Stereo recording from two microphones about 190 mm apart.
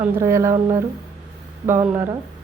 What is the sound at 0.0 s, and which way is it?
A woman's voice, 15° right (ahead or behind).